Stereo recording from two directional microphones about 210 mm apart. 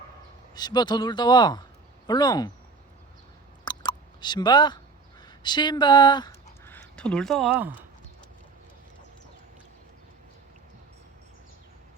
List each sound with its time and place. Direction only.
0.5 s speech: 20° left (ahead or behind)
3.6 s chewing: 20° left (ahead or behind)
5.2 s speech: 20° left (ahead or behind)
6.7 s speech: 5° left (ahead or behind)